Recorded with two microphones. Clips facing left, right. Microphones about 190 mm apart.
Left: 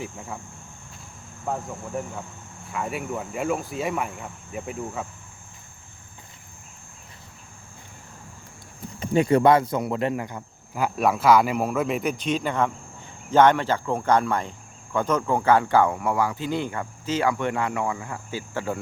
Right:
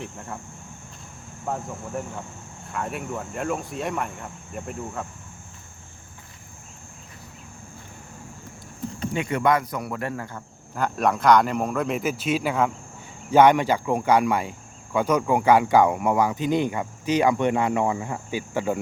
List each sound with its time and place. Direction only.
0.0 s speech: centre (ahead or behind)
1.5 s speech: centre (ahead or behind)
9.1 s speech: 35° left (ahead or behind); by 18.8 s 15° right (ahead or behind)